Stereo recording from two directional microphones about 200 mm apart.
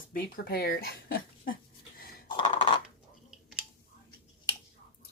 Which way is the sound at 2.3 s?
25° left (ahead or behind).